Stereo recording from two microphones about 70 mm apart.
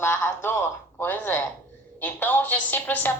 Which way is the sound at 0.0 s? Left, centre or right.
Left.